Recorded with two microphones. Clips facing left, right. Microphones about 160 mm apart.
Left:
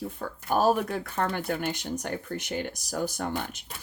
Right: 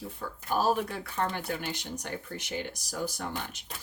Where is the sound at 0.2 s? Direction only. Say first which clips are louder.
Left 4 dB; 50° left (ahead or behind).